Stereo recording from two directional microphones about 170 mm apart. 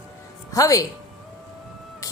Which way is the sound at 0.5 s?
20° left (ahead or behind).